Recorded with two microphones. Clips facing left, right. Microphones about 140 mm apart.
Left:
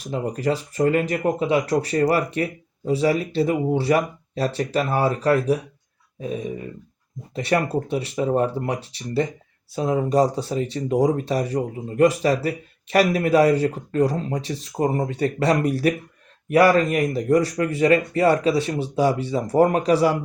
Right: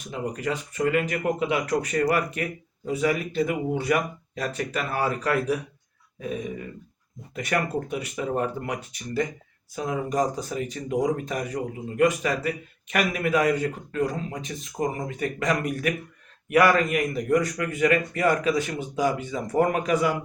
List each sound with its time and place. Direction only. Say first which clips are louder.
0.0 s speech: left 5 dB; 35° left (ahead or behind)